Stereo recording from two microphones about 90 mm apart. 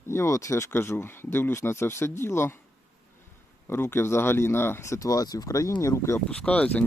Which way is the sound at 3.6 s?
25° left (ahead or behind).